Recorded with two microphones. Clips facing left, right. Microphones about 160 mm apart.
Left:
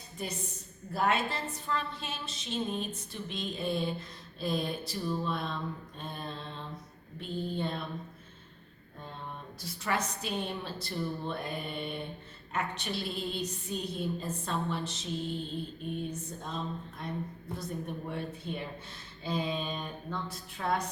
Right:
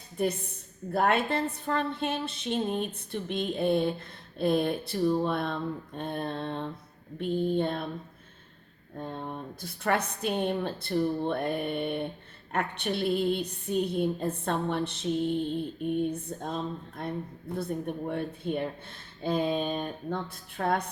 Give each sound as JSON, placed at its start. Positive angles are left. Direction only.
{"t": 0.2, "sound": "a woman's voice", "side_deg": -55}
{"t": 7.2, "sound": "a sound", "side_deg": -55}
{"t": 9.0, "sound": "a woman's voice", "side_deg": -50}
{"t": 17.6, "sound": "a woman's voice", "side_deg": -55}